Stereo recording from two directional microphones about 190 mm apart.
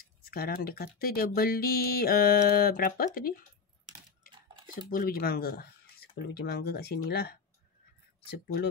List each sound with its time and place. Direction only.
0.2 s speech: 55° left (ahead or behind)
4.8 s speech: 50° left (ahead or behind)